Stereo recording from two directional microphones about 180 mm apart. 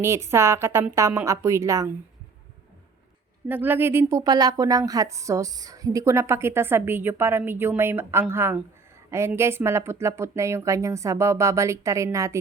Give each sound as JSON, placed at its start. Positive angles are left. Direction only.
{"t": 0.0, "sound": "speech", "side_deg": -15}
{"t": 3.5, "sound": "speech", "side_deg": -10}